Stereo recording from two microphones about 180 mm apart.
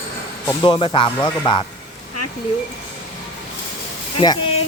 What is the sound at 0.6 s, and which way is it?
Speech, 30° left (ahead or behind).